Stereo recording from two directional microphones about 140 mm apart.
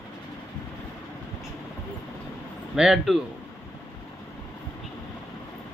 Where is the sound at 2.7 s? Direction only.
5° right (ahead or behind).